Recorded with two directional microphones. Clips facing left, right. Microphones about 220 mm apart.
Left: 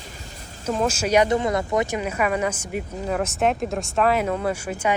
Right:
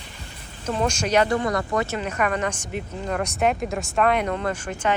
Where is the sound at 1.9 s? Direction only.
5° left (ahead or behind).